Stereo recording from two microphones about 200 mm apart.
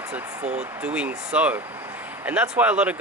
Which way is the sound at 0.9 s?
5° right (ahead or behind).